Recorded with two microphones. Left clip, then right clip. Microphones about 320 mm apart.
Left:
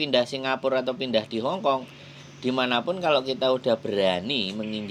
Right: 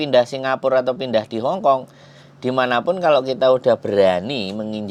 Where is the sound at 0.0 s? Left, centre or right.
Right.